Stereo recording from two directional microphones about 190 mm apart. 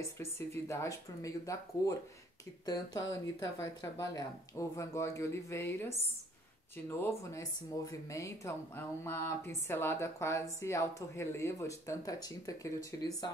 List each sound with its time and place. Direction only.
0.0 s speech: 15° left (ahead or behind)